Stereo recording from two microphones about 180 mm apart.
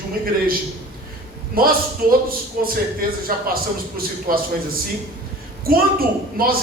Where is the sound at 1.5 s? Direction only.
55° right (ahead or behind).